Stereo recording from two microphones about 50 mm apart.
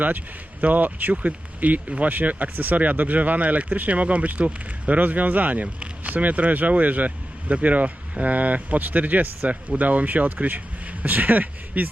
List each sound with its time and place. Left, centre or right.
0.6 s speech: right